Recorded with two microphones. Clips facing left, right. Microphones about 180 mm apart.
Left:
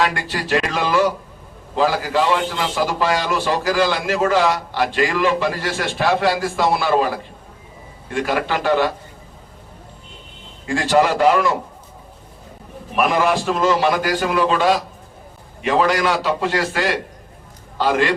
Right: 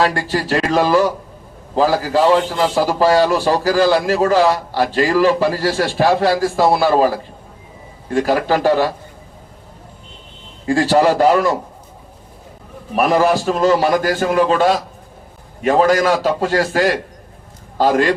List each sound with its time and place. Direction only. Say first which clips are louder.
0.0 s a man's voice: right 4 dB; 40° right (ahead or behind)
10.7 s a man's voice: right 3 dB; 40° right (ahead or behind)
13.0 s a man's voice: right 3 dB; 40° right (ahead or behind)